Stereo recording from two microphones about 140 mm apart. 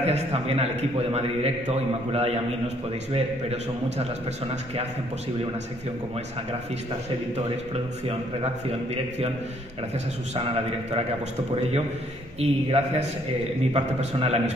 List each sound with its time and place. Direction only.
0.0 s a man's voice: 50° right (ahead or behind)
7.3 s a man's voice: 45° right (ahead or behind)
10.3 s a man's voice: 50° right (ahead or behind)
12.4 s a man's voice: 50° right (ahead or behind)